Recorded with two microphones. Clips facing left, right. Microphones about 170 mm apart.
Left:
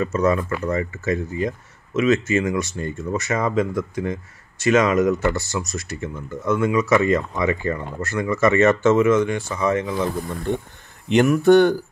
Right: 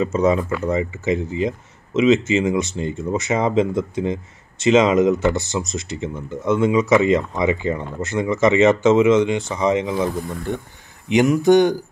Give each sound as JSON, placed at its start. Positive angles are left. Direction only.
{"t": 0.0, "sound": "speech", "side_deg": -20}
{"t": 11.1, "sound": "speech", "side_deg": -15}